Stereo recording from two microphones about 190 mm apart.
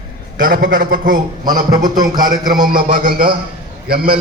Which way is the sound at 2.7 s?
45° right (ahead or behind).